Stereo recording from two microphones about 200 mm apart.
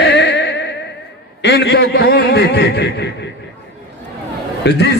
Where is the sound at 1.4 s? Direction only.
60° left (ahead or behind).